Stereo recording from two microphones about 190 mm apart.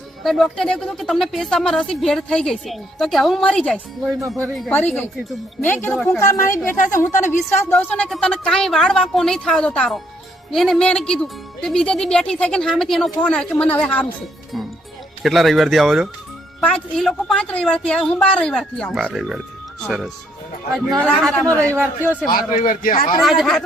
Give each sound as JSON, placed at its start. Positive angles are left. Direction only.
{"t": 0.2, "sound": "a woman's voice", "side_deg": 0}
{"t": 15.2, "sound": "speech", "side_deg": 0}
{"t": 22.3, "sound": "speech", "side_deg": 45}
{"t": 23.2, "sound": "speech", "side_deg": 0}